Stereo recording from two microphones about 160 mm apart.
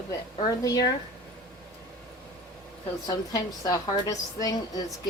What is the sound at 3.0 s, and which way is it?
A woman's voice, 25° left (ahead or behind).